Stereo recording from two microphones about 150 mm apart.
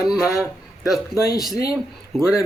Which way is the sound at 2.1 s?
5° right (ahead or behind).